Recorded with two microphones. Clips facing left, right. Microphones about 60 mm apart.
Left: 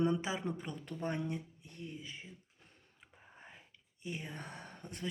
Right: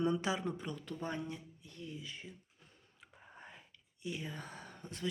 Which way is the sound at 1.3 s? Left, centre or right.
Left.